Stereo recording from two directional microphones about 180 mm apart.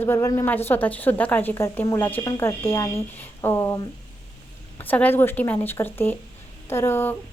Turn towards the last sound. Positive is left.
turn(degrees=10)  # may be behind; listen again after turning